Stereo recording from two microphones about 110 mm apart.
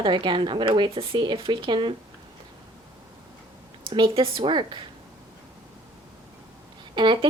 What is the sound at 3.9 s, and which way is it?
Speech, 55° right (ahead or behind).